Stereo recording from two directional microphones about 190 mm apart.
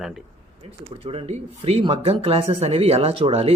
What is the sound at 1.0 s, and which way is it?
Speech, 30° right (ahead or behind).